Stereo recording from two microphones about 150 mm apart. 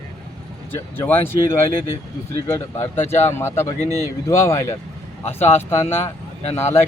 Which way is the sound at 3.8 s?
25° right (ahead or behind).